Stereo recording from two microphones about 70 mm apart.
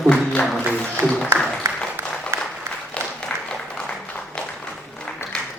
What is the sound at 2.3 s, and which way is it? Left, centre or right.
Applause, right.